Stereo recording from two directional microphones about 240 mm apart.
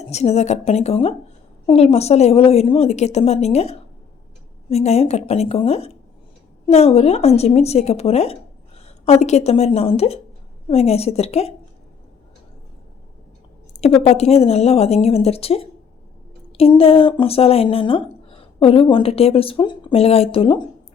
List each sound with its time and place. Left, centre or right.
0.0 s a woman's voice: left
14.0 s a woman's voice: left